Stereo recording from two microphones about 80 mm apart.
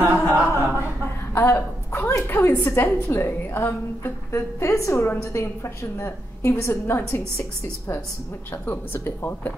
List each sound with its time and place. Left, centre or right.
0.0 s a sound: right
1.3 s a woman's voice: left
8.6 s speech: left